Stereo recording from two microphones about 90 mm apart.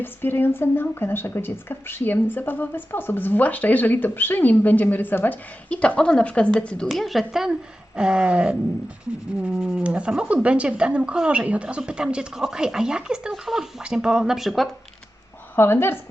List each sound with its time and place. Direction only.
0.0 s speech: 25° left (ahead or behind)
6.8 s speech: centre (ahead or behind)
9.6 s speech: 10° right (ahead or behind)
15.5 s speech: 25° left (ahead or behind)